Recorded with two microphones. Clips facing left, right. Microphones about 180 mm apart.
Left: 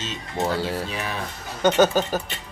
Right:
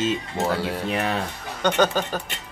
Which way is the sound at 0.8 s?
60° right (ahead or behind).